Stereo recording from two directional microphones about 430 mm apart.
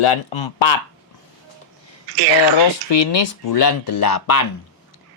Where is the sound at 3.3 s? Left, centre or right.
Left.